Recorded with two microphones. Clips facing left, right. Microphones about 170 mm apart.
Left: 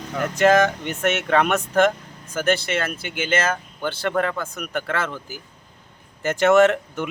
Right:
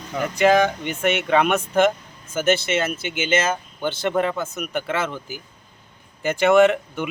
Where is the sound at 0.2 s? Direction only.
10° right (ahead or behind).